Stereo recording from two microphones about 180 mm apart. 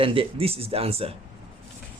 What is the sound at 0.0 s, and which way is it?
Speech, 30° right (ahead or behind).